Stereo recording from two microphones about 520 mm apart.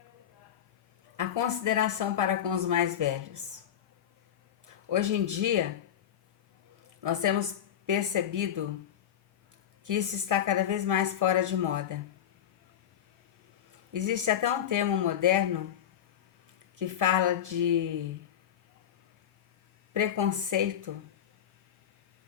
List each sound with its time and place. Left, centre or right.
1.1 s a woman's voice: right
4.6 s speech: right
7.0 s a woman's voice: right
9.8 s a woman's voice: right
13.9 s a woman's voice: right
16.7 s a woman's voice: right
19.9 s a woman's voice: right